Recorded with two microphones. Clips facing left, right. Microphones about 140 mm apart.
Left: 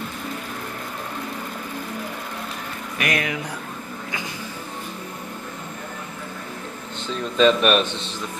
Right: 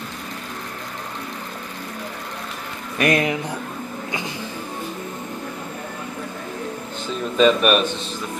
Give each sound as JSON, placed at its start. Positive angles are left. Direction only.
{"t": 3.0, "sound": "speech", "side_deg": -30}
{"t": 7.3, "sound": "speech", "side_deg": -5}